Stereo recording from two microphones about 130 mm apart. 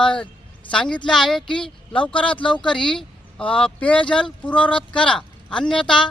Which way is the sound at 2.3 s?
40° left (ahead or behind).